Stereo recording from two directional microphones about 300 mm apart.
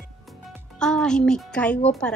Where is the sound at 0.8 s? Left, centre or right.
Centre.